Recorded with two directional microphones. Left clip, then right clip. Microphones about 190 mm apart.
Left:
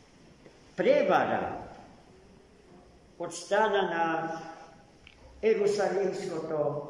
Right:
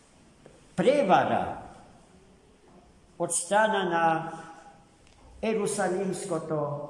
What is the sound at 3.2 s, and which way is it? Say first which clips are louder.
Speech: right 3 dB; 65° right (ahead or behind).